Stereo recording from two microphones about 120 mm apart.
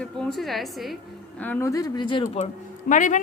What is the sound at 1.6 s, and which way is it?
Speech, 30° left (ahead or behind).